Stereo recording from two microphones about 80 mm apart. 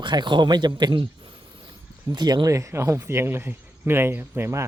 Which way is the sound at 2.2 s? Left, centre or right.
Right.